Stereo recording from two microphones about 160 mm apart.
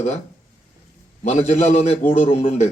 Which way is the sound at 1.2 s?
40° left (ahead or behind).